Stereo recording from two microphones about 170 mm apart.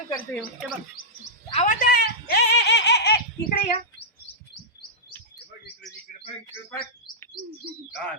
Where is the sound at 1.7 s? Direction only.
60° left (ahead or behind).